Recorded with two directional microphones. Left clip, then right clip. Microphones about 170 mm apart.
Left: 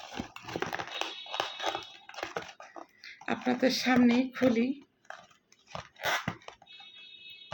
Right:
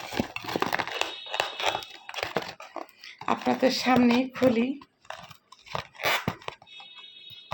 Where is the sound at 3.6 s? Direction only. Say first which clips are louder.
Right 3 dB; 15° left (ahead or behind).